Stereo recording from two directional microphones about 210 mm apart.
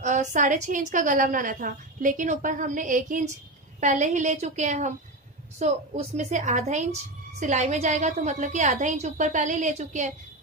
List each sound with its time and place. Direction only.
0.0 s a woman's voice: 35° right (ahead or behind)